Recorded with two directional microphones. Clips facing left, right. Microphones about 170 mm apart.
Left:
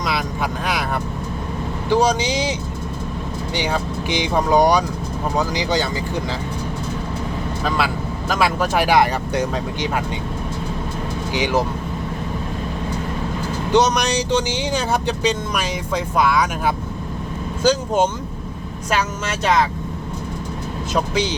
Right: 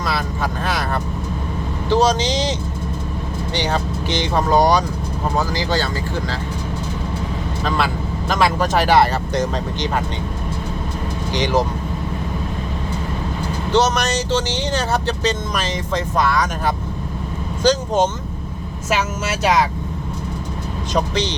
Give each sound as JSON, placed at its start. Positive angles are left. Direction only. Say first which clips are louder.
{"t": 1.9, "sound": "speech", "louder": "right 1 dB", "side_deg": 10}
{"t": 8.3, "sound": "speech", "louder": "right 1 dB", "side_deg": 10}
{"t": 11.3, "sound": "speech", "louder": "right 1 dB", "side_deg": 10}
{"t": 13.7, "sound": "speech", "louder": "left 1 dB", "side_deg": 15}
{"t": 18.9, "sound": "speech", "louder": "right 1 dB", "side_deg": -5}
{"t": 20.9, "sound": "speech", "louder": "even", "side_deg": 10}